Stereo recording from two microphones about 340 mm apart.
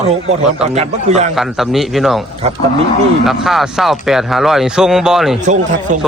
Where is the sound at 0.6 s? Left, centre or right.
Centre.